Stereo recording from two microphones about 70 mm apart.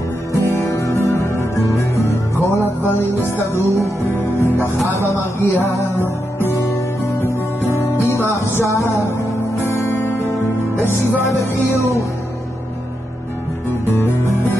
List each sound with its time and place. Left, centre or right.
0.3 s music: left
2.8 s music: left
4.4 s speech: left
5.4 s music: left
7.8 s music: left
8.4 s music: left
13.8 s music: left